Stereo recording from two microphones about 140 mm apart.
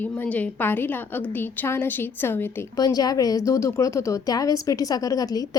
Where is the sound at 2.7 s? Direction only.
25° left (ahead or behind).